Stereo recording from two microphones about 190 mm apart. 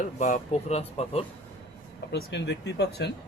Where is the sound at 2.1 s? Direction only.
60° left (ahead or behind).